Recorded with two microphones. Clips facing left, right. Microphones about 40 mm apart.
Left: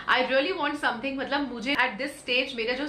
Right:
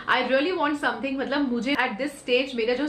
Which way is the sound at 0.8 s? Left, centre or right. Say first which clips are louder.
Right 2 dB; centre.